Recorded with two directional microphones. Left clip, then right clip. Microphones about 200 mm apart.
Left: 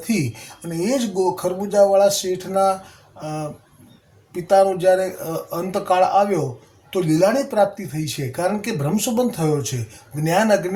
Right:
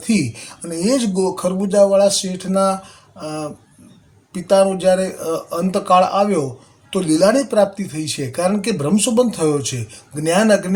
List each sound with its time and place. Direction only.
0.1 s speech: 20° right (ahead or behind)